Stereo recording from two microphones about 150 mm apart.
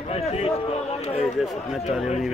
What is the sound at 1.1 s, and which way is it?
Speech, centre (ahead or behind).